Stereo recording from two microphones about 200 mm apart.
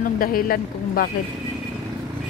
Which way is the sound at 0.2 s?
45° left (ahead or behind).